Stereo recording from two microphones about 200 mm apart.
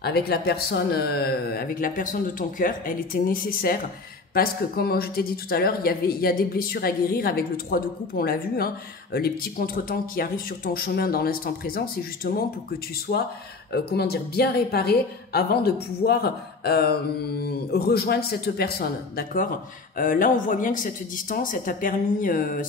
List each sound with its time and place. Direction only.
0.0 s speech: 50° left (ahead or behind)
13.7 s speech: 55° left (ahead or behind)